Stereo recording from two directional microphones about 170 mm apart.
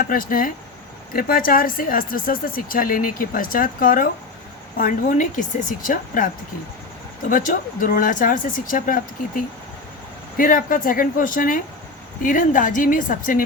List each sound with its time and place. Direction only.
0.0 s speech: 55° left (ahead or behind)